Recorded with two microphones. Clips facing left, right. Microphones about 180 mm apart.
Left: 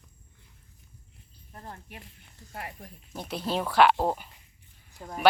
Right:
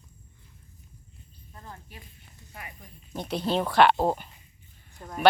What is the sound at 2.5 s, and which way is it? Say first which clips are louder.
Speech: left 5 dB; 70° left (ahead or behind).